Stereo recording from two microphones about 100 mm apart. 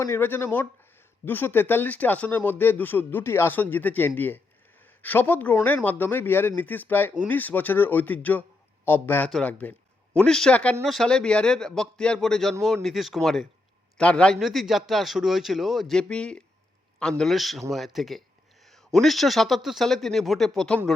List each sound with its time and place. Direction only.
0.0 s a man's voice: 25° left (ahead or behind)
14.3 s a man's voice: centre (ahead or behind)